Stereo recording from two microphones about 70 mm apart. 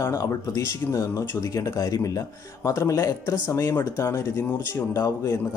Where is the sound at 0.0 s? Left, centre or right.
Left.